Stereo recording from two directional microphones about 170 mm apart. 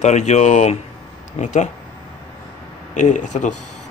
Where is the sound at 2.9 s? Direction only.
45° left (ahead or behind).